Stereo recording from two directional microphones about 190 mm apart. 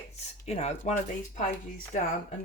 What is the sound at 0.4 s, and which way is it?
Speech, 35° left (ahead or behind).